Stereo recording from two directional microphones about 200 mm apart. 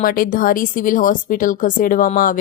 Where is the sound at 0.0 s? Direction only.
45° left (ahead or behind).